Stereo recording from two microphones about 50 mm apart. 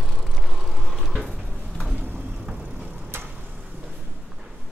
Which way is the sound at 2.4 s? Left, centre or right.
Right.